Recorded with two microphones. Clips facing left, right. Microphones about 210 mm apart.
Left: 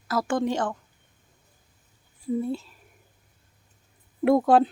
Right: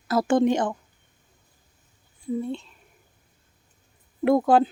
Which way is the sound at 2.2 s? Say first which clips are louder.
Left 1 dB; 5° left (ahead or behind).